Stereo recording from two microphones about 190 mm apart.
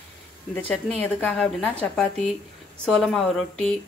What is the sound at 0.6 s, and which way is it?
A woman's voice, 10° left (ahead or behind).